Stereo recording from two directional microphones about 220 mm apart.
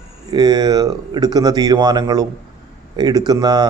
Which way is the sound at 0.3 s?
15° right (ahead or behind).